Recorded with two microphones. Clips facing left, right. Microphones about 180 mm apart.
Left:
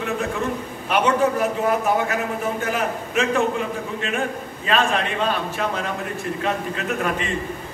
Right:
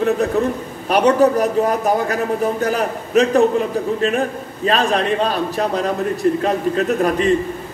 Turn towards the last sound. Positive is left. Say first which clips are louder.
# right 8 dB
turn(degrees=-40)  # may be behind; listen again after turning